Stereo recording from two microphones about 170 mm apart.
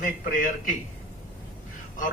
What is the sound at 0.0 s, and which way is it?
Speech, 50° left (ahead or behind).